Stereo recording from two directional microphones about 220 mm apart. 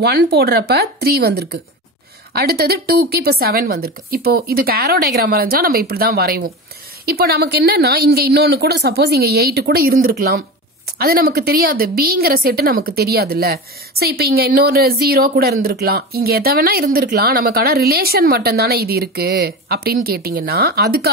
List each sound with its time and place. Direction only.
0.0 s a woman's voice: 50° right (ahead or behind)